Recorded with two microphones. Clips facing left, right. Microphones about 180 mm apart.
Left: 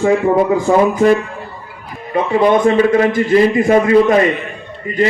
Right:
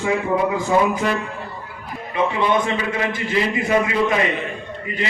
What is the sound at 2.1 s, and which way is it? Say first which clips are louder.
A man's voice: left 7 dB; 45° left (ahead or behind).